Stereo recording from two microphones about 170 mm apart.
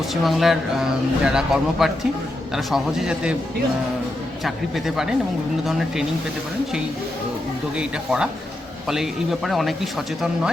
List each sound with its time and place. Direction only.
0.1 s speech: centre (ahead or behind)
4.4 s speech: centre (ahead or behind)
7.8 s speech: 5° right (ahead or behind)